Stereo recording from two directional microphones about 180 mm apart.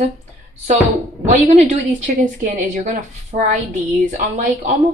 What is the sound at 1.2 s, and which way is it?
A woman's voice, 40° right (ahead or behind).